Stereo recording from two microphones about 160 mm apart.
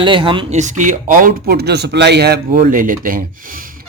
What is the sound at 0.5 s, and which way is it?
A man's voice, 50° right (ahead or behind).